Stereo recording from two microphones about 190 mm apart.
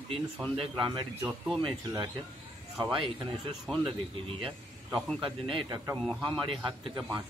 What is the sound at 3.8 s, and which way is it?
Speech, 30° right (ahead or behind).